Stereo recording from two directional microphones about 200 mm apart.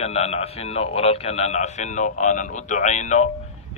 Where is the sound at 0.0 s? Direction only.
30° left (ahead or behind).